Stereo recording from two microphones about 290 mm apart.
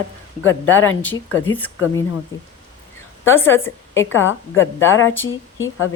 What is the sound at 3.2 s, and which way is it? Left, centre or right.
Speech, centre.